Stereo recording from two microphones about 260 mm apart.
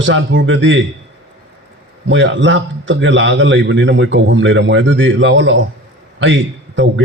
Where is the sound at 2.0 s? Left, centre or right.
Right.